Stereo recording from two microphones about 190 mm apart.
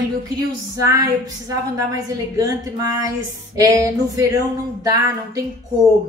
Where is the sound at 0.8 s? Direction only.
15° right (ahead or behind).